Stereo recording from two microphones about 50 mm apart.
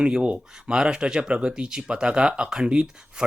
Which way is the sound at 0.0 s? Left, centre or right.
Centre.